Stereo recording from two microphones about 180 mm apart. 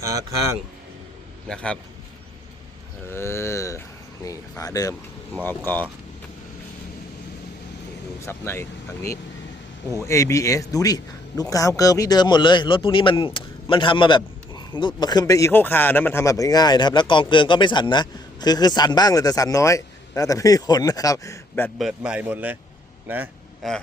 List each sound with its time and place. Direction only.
0.0 s a man's voice: 20° right (ahead or behind)
1.5 s a man's voice: 5° left (ahead or behind)
3.1 s speech: 15° left (ahead or behind)
8.2 s speech: 15° left (ahead or behind)
10.1 s speech: 15° left (ahead or behind)
21.8 s speech: 5° right (ahead or behind)
23.6 s a man's voice: centre (ahead or behind)